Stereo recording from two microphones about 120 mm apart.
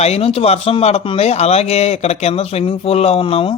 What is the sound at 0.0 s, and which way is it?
Speech, 60° left (ahead or behind).